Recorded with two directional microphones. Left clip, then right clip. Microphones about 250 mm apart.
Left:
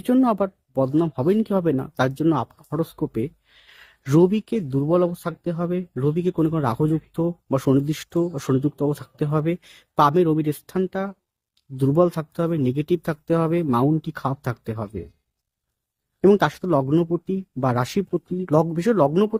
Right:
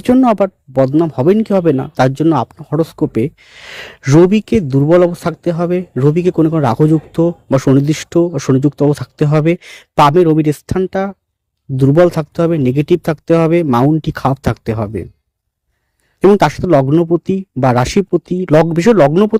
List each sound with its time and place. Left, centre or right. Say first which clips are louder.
0.0 s speech: right 9 dB; right
16.3 s speech: right 10 dB; right